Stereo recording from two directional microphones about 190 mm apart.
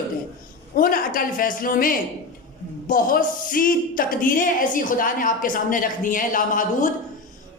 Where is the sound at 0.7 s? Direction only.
50° left (ahead or behind).